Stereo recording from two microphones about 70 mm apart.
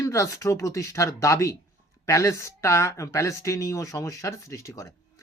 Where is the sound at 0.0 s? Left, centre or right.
Left.